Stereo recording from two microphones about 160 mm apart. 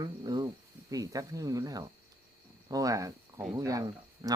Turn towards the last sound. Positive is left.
turn(degrees=-20)  # may be behind; listen again after turning